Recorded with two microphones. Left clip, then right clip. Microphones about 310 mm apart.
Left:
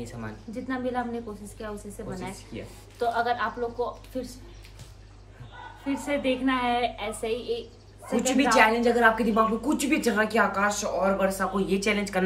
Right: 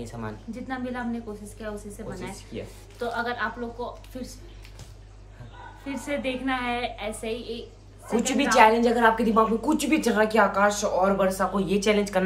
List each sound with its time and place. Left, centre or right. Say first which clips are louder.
0.7 s a woman's voice: left 2 dB; centre
5.9 s a woman's voice: left 3 dB; centre
8.2 s a woman's voice: right 2 dB; centre